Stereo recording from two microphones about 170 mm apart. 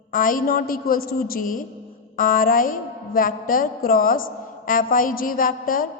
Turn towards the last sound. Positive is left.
turn(degrees=55)  # may be behind; listen again after turning